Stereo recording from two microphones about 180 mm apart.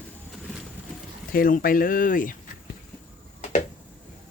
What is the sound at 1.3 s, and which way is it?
Speech, 50° left (ahead or behind).